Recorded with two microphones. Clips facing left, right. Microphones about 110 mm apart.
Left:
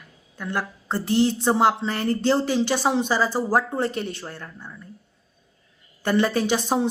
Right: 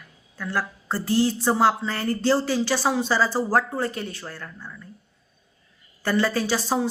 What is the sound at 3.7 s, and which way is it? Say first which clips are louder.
A woman's voice: left 2 dB; 25° left (ahead or behind).